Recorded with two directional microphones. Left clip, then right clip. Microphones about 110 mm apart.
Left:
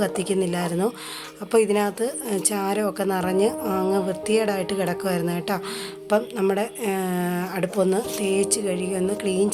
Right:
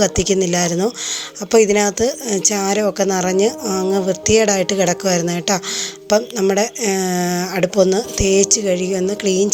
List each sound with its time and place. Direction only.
0.0 s speech: 35° right (ahead or behind)